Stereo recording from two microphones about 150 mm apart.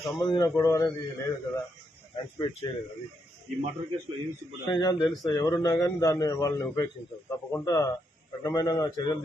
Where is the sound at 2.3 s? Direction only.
30° left (ahead or behind).